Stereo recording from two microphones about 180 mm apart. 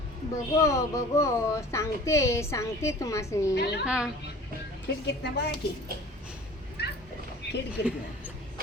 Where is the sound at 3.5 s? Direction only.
70° left (ahead or behind).